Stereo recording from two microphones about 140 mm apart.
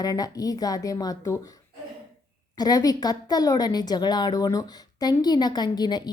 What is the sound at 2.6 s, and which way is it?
A woman's voice, 25° left (ahead or behind).